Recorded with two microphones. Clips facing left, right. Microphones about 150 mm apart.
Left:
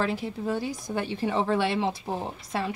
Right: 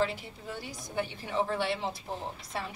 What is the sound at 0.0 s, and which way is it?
A woman's voice, 90° left.